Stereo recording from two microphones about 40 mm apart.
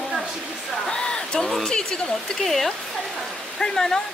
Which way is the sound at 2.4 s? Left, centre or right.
Centre.